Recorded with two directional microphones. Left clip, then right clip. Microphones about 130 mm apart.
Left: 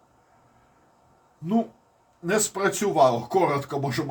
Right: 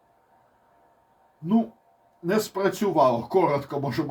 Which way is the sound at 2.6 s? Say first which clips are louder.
Left 1 dB; 25° right (ahead or behind).